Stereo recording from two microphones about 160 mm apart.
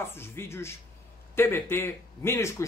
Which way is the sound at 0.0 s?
15° left (ahead or behind).